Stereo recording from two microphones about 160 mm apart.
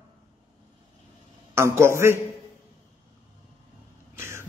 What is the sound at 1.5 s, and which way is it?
Speech, 15° right (ahead or behind).